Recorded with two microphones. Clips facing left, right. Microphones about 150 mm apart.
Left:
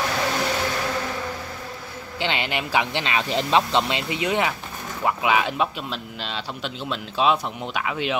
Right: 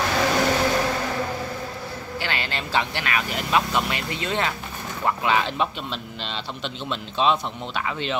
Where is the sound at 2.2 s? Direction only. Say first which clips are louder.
Left 4 dB; 20° left (ahead or behind).